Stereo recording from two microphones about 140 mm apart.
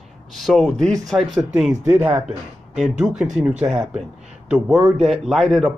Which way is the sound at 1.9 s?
15° right (ahead or behind).